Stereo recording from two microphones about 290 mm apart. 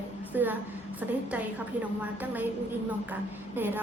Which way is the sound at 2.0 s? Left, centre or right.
Centre.